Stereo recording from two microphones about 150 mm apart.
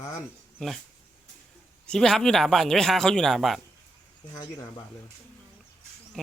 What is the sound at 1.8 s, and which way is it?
A man's voice, 5° left (ahead or behind).